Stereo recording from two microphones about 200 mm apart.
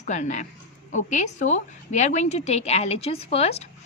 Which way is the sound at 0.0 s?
35° left (ahead or behind).